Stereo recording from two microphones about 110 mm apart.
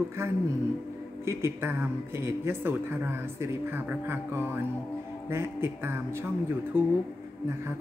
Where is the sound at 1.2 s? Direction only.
25° right (ahead or behind).